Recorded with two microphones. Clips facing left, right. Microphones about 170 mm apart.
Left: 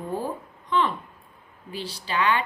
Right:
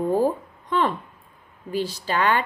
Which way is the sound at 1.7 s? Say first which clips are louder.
Right 5 dB; 45° right (ahead or behind).